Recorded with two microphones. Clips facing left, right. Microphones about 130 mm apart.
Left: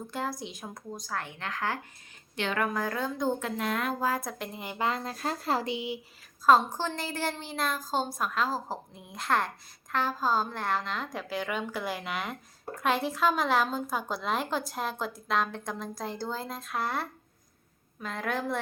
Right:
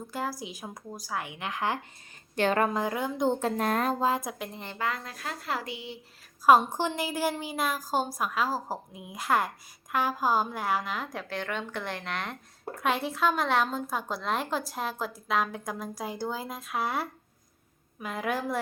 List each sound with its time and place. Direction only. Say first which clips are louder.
0.1 s a woman's voice: right 1 dB; 5° right (ahead or behind)
2.3 s a woman's voice: right 5 dB; 45° right (ahead or behind)
2.6 s speech: right 2 dB; 20° right (ahead or behind)
3.4 s speech: right 4 dB; 40° right (ahead or behind)
4.0 s speech: right 2 dB; 20° right (ahead or behind)
4.4 s a woman's voice: left 1 dB; 5° left (ahead or behind)
4.8 s speech: left 3 dB; 25° left (ahead or behind)
6.4 s a woman's voice: right 2 dB; 15° right (ahead or behind)